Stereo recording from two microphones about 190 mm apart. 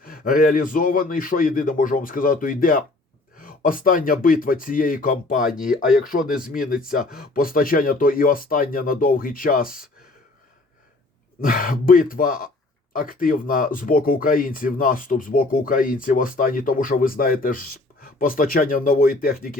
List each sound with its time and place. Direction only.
0.0 s speech: 50° left (ahead or behind)
11.3 s speech: 50° left (ahead or behind)